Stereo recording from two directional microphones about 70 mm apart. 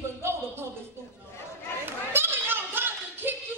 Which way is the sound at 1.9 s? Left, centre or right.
Right.